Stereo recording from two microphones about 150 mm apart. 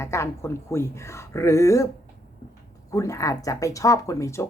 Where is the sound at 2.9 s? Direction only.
20° left (ahead or behind).